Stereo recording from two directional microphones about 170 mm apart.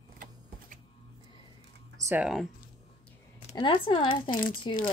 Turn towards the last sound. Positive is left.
turn(degrees=55)  # may be behind; listen again after turning